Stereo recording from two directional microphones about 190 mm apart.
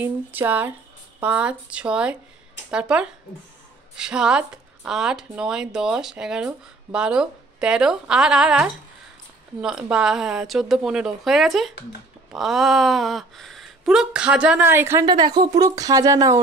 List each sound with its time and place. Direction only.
0.0 s speech: 10° right (ahead or behind)